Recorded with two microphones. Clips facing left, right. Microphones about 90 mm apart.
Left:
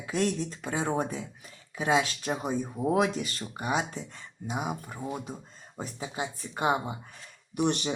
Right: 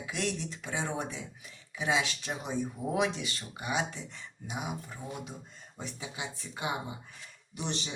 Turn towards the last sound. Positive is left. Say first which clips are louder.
# left 9 dB
turn(degrees=55)  # may be behind; listen again after turning